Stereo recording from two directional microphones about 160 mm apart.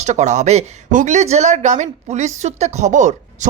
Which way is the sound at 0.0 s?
45° right (ahead or behind).